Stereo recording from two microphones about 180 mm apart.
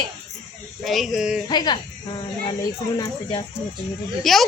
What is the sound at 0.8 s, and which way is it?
Speech, centre (ahead or behind).